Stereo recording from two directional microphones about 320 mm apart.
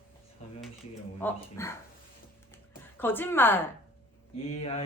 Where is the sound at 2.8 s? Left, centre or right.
Centre.